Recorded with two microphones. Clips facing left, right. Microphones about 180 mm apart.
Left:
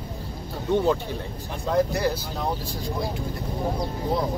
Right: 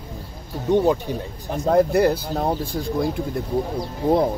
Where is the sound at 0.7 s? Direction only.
15° right (ahead or behind).